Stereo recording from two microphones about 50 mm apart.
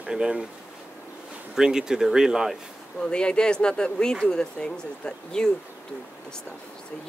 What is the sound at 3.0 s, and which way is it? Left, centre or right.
Speech, centre.